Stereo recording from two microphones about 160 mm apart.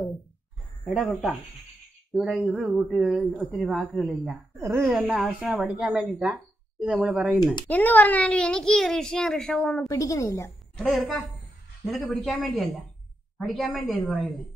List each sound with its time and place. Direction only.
0.9 s a child's voice: 5° right (ahead or behind)
3.2 s a child's voice: 5° left (ahead or behind)
4.2 s speech: 15° right (ahead or behind)
4.8 s a child's voice: 5° right (ahead or behind)
7.6 s a child's voice: 10° left (ahead or behind)
9.8 s a woman's voice: 20° left (ahead or behind)
10.8 s a child's voice: centre (ahead or behind)